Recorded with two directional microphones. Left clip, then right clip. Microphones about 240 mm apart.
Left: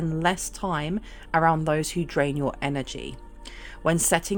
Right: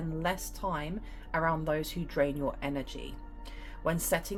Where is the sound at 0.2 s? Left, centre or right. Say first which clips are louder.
Left 8 dB; left.